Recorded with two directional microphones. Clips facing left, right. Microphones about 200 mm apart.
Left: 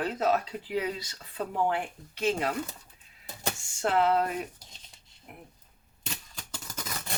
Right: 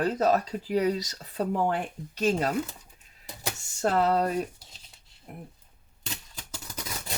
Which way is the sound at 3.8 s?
40° right (ahead or behind).